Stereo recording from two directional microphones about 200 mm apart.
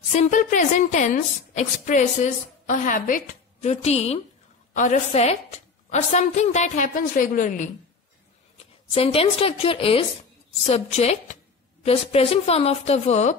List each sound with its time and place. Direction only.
0.1 s a woman's voice: 35° left (ahead or behind)
8.9 s a woman's voice: 30° left (ahead or behind)